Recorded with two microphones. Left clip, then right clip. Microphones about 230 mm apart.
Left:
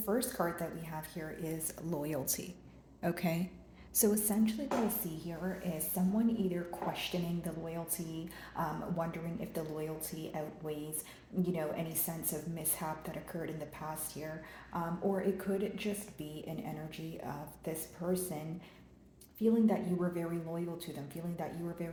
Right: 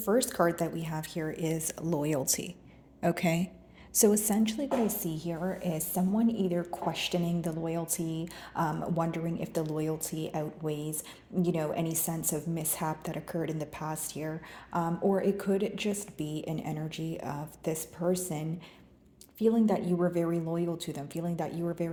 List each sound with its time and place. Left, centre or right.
0.0 s a woman's voice: right